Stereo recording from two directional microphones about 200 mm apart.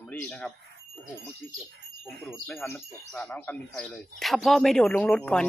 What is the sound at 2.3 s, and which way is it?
Speech, 5° left (ahead or behind).